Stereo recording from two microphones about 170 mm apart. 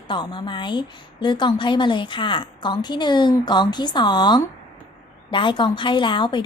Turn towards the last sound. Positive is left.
turn(degrees=30)  # may be behind; listen again after turning